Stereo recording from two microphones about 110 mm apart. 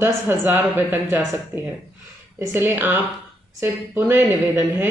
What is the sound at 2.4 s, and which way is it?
Speech, 20° right (ahead or behind).